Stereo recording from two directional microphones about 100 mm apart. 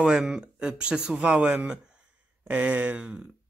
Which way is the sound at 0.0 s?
5° right (ahead or behind).